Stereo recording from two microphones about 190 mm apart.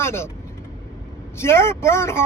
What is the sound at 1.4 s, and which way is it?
Speech, 15° left (ahead or behind).